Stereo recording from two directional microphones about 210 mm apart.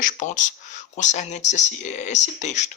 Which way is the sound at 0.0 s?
40° left (ahead or behind).